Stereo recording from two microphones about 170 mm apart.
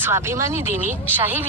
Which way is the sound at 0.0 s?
15° right (ahead or behind).